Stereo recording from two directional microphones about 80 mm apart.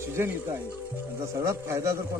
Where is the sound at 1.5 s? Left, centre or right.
Right.